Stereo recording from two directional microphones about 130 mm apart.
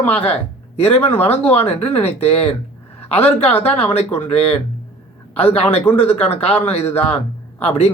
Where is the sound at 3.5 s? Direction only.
50° left (ahead or behind).